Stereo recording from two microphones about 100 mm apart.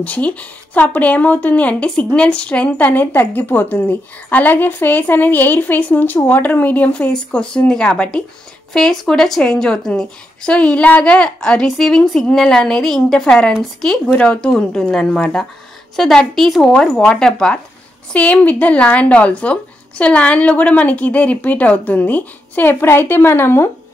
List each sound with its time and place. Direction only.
0.0 s speech: 15° left (ahead or behind)